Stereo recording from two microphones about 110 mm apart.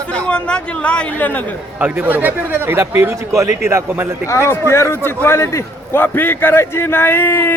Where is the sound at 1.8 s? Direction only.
15° right (ahead or behind).